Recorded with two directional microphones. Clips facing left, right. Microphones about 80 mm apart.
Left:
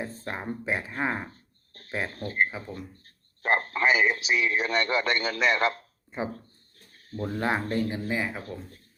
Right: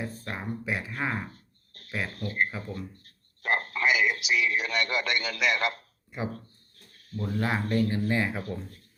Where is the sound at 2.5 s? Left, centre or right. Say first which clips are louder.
Right 1 dB; left.